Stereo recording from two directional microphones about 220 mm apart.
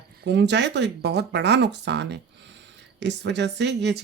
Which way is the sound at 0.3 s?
50° right (ahead or behind).